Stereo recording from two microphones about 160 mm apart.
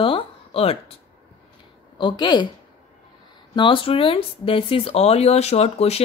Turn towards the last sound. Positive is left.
turn(degrees=40)  # may be behind; listen again after turning